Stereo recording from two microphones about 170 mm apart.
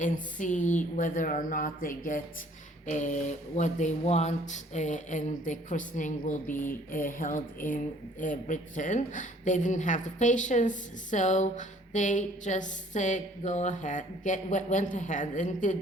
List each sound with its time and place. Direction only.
0.0 s speech: 50° left (ahead or behind)